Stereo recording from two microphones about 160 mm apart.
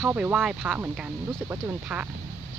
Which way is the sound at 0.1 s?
10° right (ahead or behind).